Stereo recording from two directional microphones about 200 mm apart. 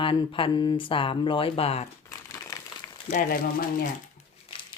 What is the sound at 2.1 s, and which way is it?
Crumpling, 15° left (ahead or behind).